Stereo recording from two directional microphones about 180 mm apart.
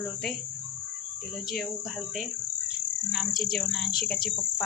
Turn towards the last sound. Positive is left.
turn(degrees=5)  # may be behind; listen again after turning